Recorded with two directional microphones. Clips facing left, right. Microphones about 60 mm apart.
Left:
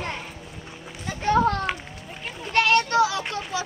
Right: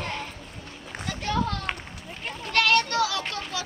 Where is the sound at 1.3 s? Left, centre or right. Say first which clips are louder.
Left 8 dB; left.